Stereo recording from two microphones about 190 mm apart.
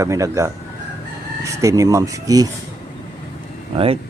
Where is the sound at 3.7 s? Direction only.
30° right (ahead or behind).